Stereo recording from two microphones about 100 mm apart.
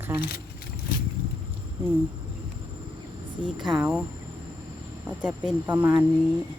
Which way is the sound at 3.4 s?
50° right (ahead or behind).